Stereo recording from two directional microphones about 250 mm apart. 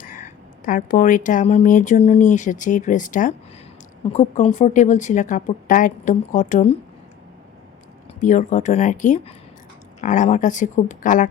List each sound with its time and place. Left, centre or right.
0.6 s speech: left
8.2 s speech: left